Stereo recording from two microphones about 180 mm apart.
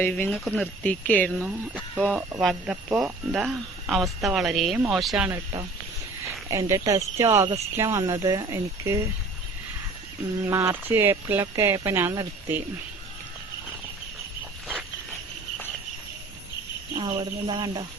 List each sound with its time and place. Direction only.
0.0 s speech: 10° left (ahead or behind)
0.3 s speech: centre (ahead or behind)
1.3 s speech: 10° right (ahead or behind)
6.5 s speech: 20° right (ahead or behind)
10.4 s speech: 15° right (ahead or behind)
17.0 s speech: 25° right (ahead or behind)